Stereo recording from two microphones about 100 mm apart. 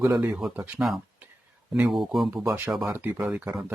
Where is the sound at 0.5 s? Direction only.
20° right (ahead or behind).